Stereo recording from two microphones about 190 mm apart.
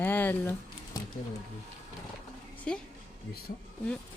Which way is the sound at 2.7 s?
5° left (ahead or behind).